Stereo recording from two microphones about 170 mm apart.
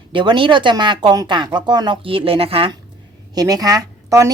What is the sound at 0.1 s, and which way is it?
A woman's voice, 30° right (ahead or behind).